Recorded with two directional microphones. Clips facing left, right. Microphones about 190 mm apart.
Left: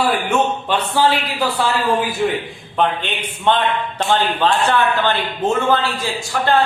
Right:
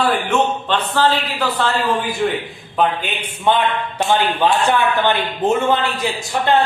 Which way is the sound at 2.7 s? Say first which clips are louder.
Even; 10° right (ahead or behind).